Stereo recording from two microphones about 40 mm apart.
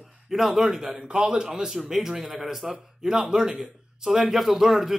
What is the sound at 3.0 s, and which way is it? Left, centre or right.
A man's voice, centre.